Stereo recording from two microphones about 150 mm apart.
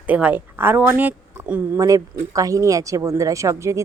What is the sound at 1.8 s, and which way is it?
Speech, 20° right (ahead or behind).